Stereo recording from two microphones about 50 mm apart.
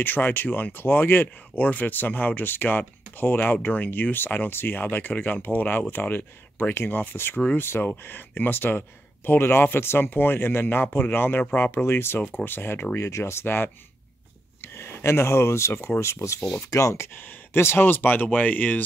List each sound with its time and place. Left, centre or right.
0.0 s speech: left
11.8 s speech: left
12.9 s speech: left
17.2 s speech: left